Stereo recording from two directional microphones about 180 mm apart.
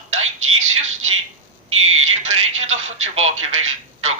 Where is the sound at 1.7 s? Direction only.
90° right.